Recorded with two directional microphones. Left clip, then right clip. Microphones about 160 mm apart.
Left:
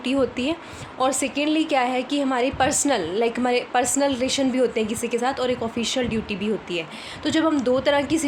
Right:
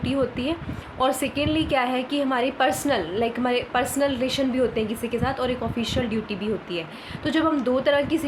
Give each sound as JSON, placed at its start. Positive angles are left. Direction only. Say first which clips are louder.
{"t": 0.0, "sound": "a woman's voice", "louder": "left 2 dB", "side_deg": 40}